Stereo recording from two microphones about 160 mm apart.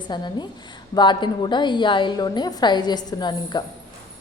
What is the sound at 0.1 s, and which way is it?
A woman's voice, 30° left (ahead or behind).